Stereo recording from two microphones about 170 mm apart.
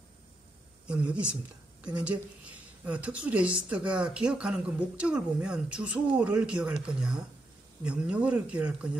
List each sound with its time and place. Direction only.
0.8 s a woman's voice: 5° right (ahead or behind)